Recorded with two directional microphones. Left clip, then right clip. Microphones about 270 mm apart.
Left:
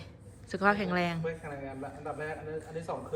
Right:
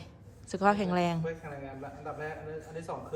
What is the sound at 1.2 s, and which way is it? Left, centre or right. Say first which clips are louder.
A man's voice: left 1 dB; centre.